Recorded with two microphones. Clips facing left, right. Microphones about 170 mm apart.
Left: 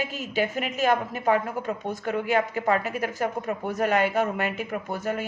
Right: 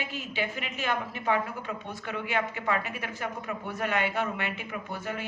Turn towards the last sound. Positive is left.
turn(degrees=45)  # may be behind; listen again after turning